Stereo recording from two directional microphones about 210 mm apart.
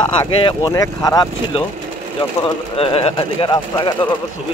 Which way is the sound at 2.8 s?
25° left (ahead or behind).